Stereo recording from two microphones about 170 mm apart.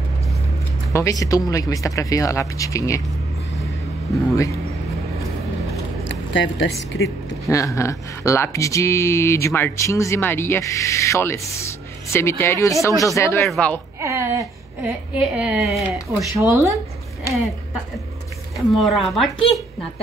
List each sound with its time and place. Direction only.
0.9 s speech: 20° left (ahead or behind)
6.0 s a sound: 90° left
7.0 s speech: 20° left (ahead or behind)
13.4 s speech: 5° left (ahead or behind)
14.0 s a sound: 15° right (ahead or behind)
14.9 s a woman's voice: 10° right (ahead or behind)
16.3 s a woman's voice: 20° right (ahead or behind)
18.8 s speech: centre (ahead or behind)